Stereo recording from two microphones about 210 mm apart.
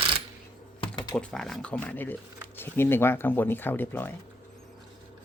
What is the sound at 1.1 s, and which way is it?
Speech, 5° left (ahead or behind).